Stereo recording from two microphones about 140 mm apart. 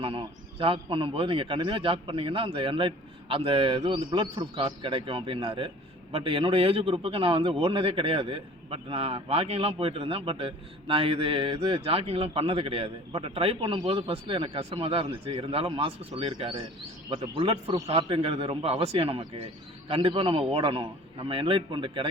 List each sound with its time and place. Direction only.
0.0 s a man's voice: 40° right (ahead or behind)